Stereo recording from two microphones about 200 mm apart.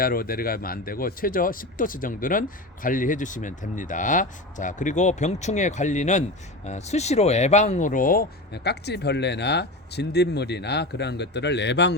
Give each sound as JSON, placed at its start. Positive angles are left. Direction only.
{"t": 0.0, "sound": "speech", "side_deg": 45}